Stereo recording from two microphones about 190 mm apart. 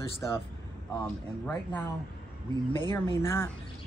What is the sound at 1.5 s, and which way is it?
Speech, 10° left (ahead or behind).